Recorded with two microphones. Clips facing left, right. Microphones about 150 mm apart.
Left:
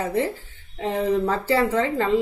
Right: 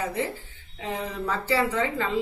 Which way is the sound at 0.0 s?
45° left (ahead or behind).